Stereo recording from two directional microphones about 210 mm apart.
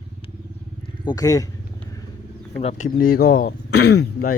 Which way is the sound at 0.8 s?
20° left (ahead or behind).